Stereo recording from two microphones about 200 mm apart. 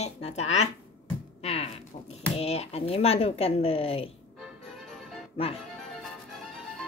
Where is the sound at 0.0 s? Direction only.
30° left (ahead or behind).